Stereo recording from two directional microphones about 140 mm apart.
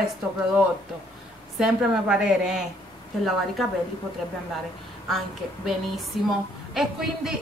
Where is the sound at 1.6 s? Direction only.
5° right (ahead or behind).